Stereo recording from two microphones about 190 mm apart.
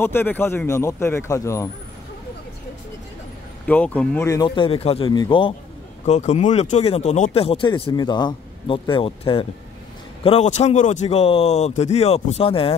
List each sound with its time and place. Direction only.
0.0 s speech: 10° left (ahead or behind)
3.6 s speech: 10° left (ahead or behind); by 5.5 s 25° left (ahead or behind)
6.0 s a man's voice: 35° left (ahead or behind)